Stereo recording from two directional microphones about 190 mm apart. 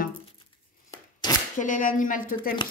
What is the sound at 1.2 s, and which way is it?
Speech, 20° left (ahead or behind).